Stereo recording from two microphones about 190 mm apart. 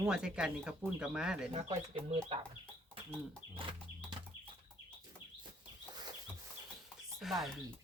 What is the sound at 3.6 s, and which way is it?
Horse, 25° right (ahead or behind).